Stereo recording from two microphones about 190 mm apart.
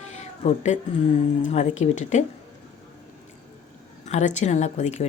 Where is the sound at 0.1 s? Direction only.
35° left (ahead or behind).